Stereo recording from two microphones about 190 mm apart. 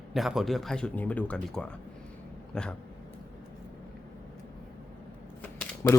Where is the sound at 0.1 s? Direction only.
Centre (ahead or behind).